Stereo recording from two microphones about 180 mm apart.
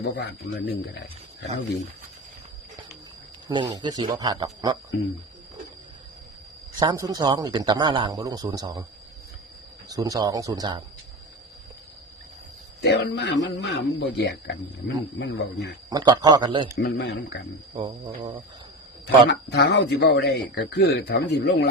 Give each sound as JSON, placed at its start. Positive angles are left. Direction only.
{"t": 0.0, "sound": "speech", "side_deg": 80}
{"t": 3.5, "sound": "a man's voice", "side_deg": -25}
{"t": 6.7, "sound": "a man's voice", "side_deg": -20}
{"t": 9.9, "sound": "a man's voice", "side_deg": -20}
{"t": 12.8, "sound": "speech", "side_deg": 65}
{"t": 15.9, "sound": "a man's voice", "side_deg": -25}
{"t": 16.7, "sound": "speech", "side_deg": 65}
{"t": 17.7, "sound": "a man's voice", "side_deg": -25}
{"t": 19.0, "sound": "speech", "side_deg": 70}